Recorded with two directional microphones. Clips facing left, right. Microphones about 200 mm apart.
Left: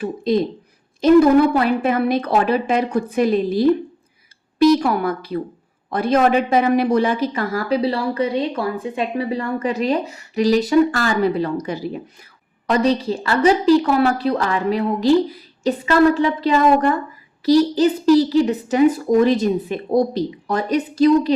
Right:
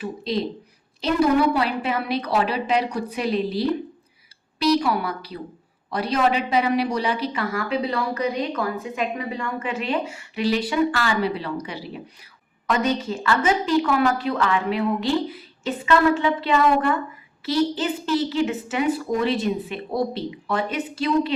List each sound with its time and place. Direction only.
0.0 s a woman's voice: 50° left (ahead or behind)
12.6 s speech: 35° left (ahead or behind)